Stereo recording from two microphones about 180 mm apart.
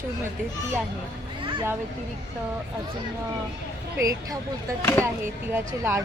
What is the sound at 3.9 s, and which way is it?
Speech, 15° right (ahead or behind).